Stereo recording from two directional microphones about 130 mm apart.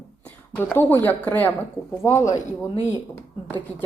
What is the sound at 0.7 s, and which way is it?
Speech, 15° left (ahead or behind).